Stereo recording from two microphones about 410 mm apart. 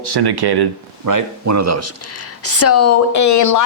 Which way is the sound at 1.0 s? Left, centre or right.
Right.